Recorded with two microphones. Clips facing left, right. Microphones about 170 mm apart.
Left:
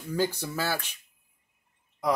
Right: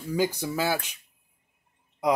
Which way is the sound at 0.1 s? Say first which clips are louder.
Right 2 dB; 15° right (ahead or behind).